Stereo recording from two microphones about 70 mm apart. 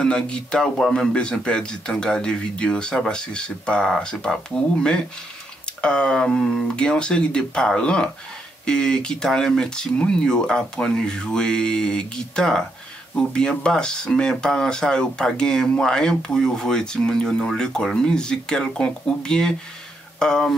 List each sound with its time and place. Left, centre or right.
0.0 s speech: centre
5.8 s speech: centre